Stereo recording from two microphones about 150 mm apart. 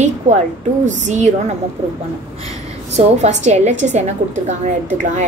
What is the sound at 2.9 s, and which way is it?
A woman's voice, 50° right (ahead or behind).